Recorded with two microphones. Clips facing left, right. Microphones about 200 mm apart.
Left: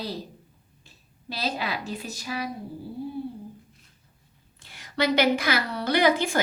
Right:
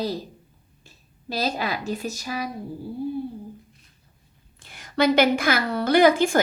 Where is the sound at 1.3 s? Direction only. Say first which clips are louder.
Right 4 dB; 45° right (ahead or behind).